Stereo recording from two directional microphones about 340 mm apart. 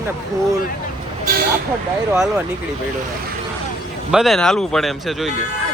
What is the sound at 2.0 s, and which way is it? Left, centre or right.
Speech, centre.